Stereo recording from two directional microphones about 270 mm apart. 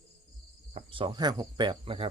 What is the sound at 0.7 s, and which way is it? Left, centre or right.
Cricket, centre.